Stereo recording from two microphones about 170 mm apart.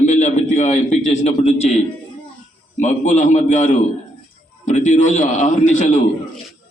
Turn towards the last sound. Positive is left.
turn(degrees=45)  # may be behind; listen again after turning